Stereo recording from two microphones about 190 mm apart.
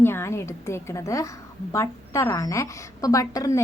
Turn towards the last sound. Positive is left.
turn(degrees=20)  # may be behind; listen again after turning